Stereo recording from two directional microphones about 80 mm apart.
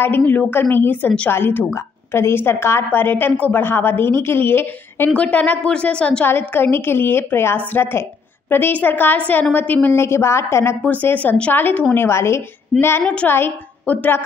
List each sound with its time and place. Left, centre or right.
0.2 s a woman's voice: centre
5.1 s a woman's voice: centre
6.2 s a woman's voice: left
10.8 s a woman's voice: left
13.0 s a woman's voice: centre
13.3 s a woman's voice: left